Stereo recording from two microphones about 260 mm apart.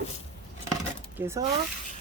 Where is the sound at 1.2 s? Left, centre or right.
Centre.